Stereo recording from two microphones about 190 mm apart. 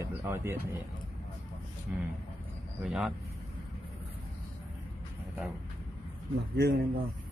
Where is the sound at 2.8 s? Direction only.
5° right (ahead or behind).